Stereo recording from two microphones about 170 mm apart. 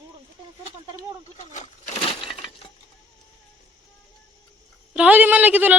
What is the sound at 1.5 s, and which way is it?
Crushing, 35° left (ahead or behind).